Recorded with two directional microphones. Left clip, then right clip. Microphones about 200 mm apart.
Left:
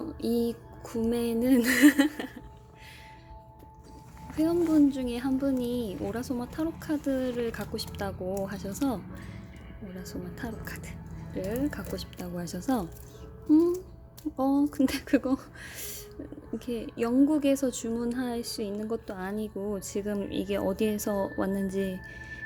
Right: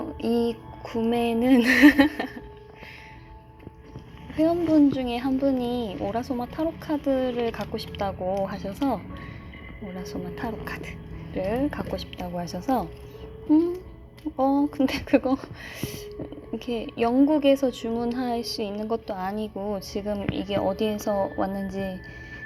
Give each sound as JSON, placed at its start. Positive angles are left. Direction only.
{"t": 1.1, "sound": "a woman's voice", "side_deg": 15}
{"t": 4.4, "sound": "a woman's voice", "side_deg": 20}
{"t": 9.9, "sound": "a woman's voice", "side_deg": 10}
{"t": 14.3, "sound": "a woman's voice", "side_deg": 25}